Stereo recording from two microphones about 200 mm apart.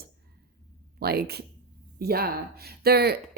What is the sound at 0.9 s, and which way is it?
A woman's voice, 50° right (ahead or behind).